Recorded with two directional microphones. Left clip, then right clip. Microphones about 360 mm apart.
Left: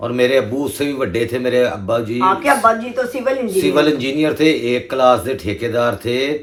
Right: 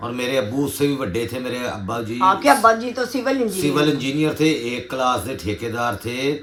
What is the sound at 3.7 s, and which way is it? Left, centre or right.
Speech, centre.